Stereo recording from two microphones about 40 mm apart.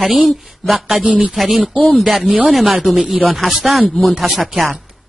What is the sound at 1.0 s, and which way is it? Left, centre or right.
Speech, right.